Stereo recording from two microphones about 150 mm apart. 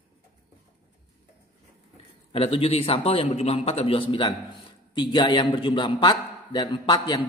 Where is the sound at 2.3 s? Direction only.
40° left (ahead or behind).